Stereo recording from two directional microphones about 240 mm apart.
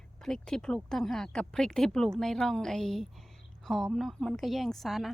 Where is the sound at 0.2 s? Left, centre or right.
Centre.